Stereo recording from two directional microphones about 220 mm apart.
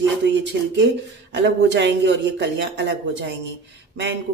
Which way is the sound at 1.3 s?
55° right (ahead or behind).